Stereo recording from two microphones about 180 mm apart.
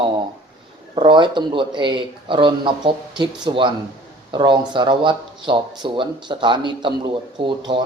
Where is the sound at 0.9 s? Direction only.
25° right (ahead or behind).